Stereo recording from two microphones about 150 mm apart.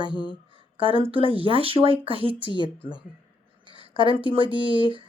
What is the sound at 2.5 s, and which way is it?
Speech, 35° left (ahead or behind).